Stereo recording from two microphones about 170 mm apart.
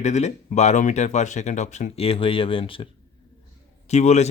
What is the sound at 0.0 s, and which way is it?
Speech, 40° left (ahead or behind).